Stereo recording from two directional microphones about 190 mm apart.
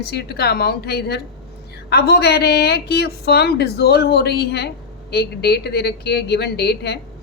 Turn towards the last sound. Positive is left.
turn(degrees=60)  # may be behind; listen again after turning